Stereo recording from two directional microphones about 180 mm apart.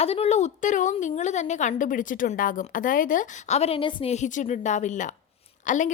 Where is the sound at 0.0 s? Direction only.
35° left (ahead or behind).